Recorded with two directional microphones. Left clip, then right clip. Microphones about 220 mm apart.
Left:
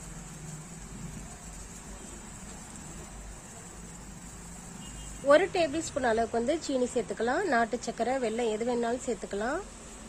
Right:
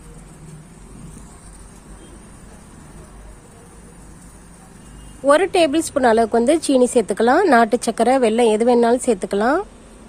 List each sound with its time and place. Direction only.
5.3 s a woman's voice: 50° right (ahead or behind)